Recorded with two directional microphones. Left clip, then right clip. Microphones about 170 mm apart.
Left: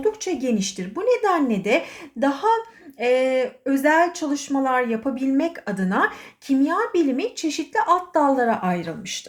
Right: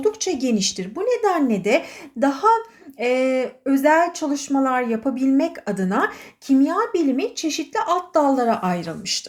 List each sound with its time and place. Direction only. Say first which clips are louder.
0.0 s speech: right 2 dB; 15° right (ahead or behind)